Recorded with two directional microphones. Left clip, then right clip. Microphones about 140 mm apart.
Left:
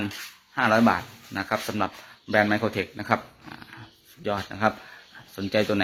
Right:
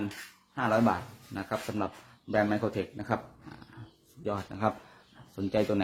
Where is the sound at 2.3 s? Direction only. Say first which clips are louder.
Left 6 dB; 5° left (ahead or behind).